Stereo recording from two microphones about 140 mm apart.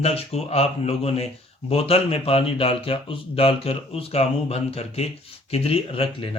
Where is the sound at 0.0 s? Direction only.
45° left (ahead or behind).